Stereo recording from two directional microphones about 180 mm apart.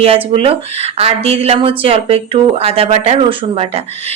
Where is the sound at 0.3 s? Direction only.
30° right (ahead or behind).